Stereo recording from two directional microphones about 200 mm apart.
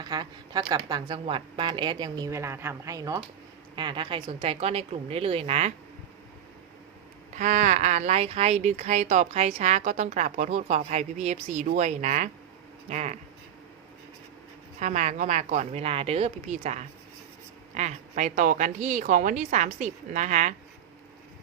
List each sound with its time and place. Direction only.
0.0 s a woman's voice: 20° right (ahead or behind)
7.3 s speech: 40° right (ahead or behind)
14.8 s speech: 35° right (ahead or behind)